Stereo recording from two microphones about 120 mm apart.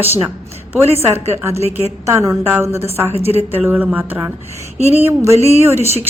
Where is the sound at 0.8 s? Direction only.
20° right (ahead or behind).